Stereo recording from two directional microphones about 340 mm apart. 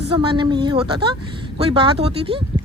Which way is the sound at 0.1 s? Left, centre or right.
Centre.